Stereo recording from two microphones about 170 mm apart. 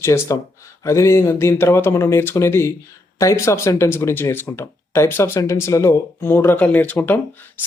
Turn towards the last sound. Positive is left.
turn(degrees=10)  # may be behind; listen again after turning